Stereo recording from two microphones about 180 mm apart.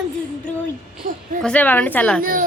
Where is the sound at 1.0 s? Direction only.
50° right (ahead or behind).